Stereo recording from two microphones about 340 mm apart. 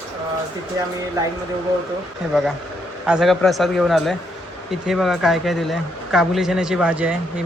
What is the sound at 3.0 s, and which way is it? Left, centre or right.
Speech, centre.